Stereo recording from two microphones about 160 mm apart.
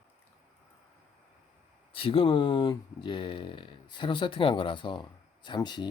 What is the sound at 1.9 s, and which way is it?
Speech, 35° left (ahead or behind).